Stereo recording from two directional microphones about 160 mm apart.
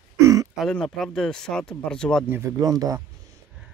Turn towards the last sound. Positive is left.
turn(degrees=-25)  # may be behind; listen again after turning